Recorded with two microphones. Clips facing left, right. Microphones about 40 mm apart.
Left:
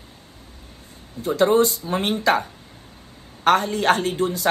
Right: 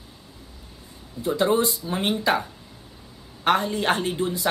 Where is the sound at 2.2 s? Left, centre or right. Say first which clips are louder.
Left 4 dB; left.